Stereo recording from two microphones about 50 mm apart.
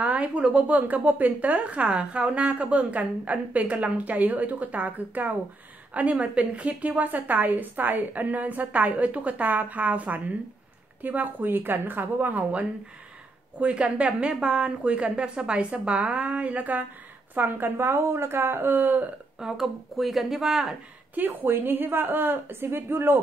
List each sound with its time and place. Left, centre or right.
0.0 s speech: right
0.7 s a woman's voice: right
13.6 s a woman's voice: right
19.4 s speech: centre
21.1 s a woman's voice: right